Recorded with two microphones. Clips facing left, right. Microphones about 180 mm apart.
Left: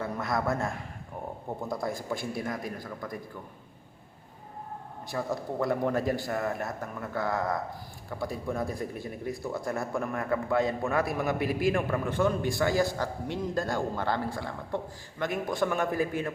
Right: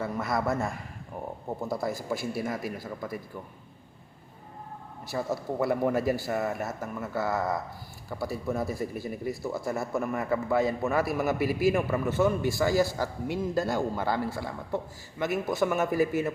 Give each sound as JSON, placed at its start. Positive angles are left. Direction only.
{"t": 0.0, "sound": "a man's voice", "side_deg": 0}
{"t": 5.0, "sound": "a man's voice", "side_deg": -5}